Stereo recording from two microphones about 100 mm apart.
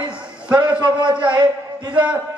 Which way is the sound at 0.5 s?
50° right (ahead or behind).